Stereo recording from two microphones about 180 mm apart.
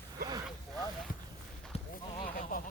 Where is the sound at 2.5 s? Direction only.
50° left (ahead or behind).